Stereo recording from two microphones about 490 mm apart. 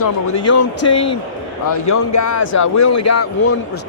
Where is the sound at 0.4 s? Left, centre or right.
Left.